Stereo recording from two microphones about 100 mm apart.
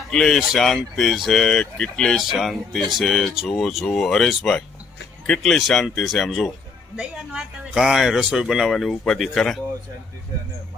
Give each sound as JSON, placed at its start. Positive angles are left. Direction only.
{"t": 0.1, "sound": "speech", "side_deg": 5}
{"t": 6.9, "sound": "speech", "side_deg": -10}